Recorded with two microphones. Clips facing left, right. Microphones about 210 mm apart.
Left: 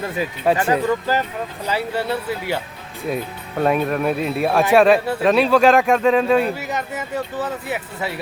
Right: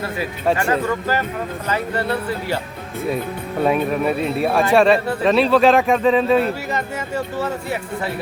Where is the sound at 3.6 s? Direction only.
Centre (ahead or behind).